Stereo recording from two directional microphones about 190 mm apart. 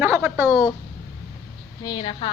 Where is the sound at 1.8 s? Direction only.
25° left (ahead or behind).